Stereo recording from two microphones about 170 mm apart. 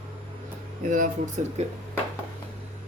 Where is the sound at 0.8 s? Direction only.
50° right (ahead or behind).